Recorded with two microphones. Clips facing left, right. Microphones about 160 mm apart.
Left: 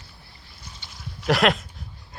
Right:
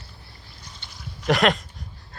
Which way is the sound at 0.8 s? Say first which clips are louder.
Right 1 dB; centre (ahead or behind).